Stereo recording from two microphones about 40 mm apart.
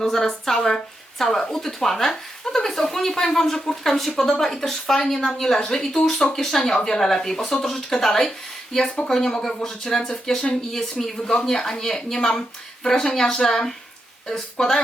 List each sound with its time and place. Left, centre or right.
0.0 s a woman's voice: centre